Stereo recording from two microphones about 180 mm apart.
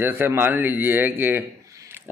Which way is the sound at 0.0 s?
15° right (ahead or behind).